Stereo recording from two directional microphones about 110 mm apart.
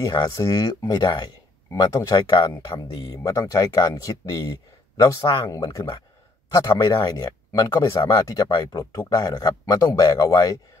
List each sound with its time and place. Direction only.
0.0 s speech: 30° left (ahead or behind)
1.7 s speech: 30° left (ahead or behind)
2.1 s speech: 45° left (ahead or behind); by 8.0 s 25° left (ahead or behind)
8.0 s speech: 40° left (ahead or behind)